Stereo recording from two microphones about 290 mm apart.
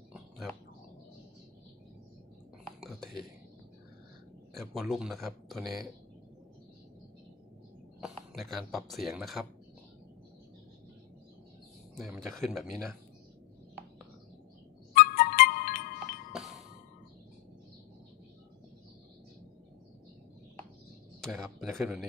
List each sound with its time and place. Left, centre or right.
0.1 s a sound: centre
2.6 s whispering: centre
4.6 s speech: centre
8.0 s speech: centre
11.9 s speech: centre
15.0 s music: left
16.3 s music: centre
21.2 s a sound: centre